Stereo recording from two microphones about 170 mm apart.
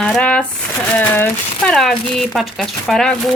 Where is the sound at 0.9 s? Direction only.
10° left (ahead or behind).